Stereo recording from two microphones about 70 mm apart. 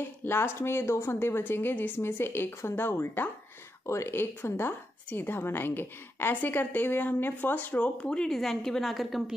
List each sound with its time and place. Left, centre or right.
0.2 s a woman's voice: left
7.8 s a woman's voice: centre